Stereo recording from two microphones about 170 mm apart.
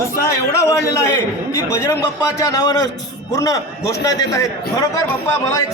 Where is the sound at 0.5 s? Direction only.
15° left (ahead or behind).